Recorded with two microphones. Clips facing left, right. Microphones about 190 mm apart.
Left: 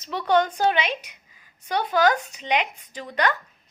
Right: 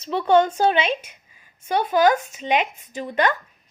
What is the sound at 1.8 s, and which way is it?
Speech, 20° right (ahead or behind).